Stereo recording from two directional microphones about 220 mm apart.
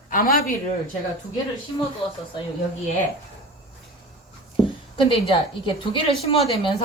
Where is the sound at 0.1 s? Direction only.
40° left (ahead or behind).